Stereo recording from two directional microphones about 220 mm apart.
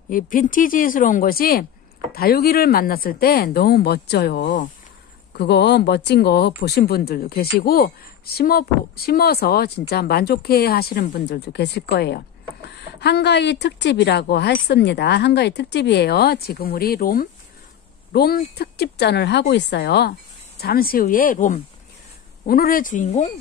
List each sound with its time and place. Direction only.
0.1 s speech: 40° left (ahead or behind)